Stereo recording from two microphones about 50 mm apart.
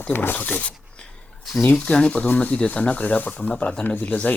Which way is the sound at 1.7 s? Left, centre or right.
Centre.